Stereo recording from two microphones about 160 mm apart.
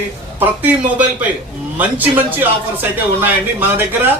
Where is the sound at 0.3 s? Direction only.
10° right (ahead or behind).